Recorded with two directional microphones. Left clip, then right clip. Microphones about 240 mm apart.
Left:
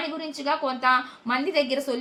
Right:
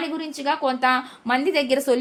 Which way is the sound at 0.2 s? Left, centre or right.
Right.